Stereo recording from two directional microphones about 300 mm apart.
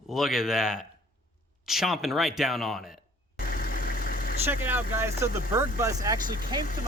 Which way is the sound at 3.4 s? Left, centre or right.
Left.